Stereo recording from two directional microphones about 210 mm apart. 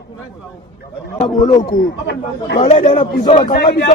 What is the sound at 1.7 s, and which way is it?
Speech, 55° left (ahead or behind).